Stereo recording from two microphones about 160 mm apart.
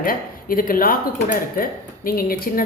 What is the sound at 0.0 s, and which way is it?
A woman's voice, 65° left (ahead or behind).